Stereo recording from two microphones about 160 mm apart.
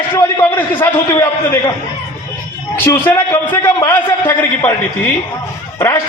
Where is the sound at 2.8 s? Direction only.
15° left (ahead or behind).